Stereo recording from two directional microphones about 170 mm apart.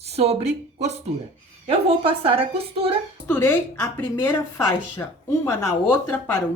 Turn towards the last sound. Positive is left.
turn(degrees=15)  # may be behind; listen again after turning